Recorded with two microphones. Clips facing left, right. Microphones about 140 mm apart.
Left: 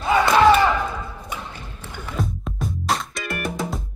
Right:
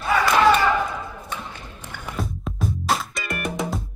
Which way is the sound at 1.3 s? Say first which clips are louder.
Even; 10° left (ahead or behind).